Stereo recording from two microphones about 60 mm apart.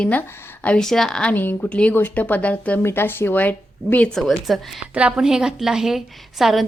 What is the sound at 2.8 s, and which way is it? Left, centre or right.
A woman's voice, left.